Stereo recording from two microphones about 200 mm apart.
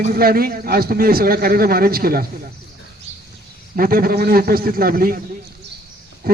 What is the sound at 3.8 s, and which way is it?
A man's voice, 45° right (ahead or behind).